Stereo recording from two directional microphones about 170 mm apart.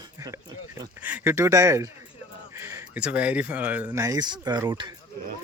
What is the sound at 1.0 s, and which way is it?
Speech, 10° right (ahead or behind).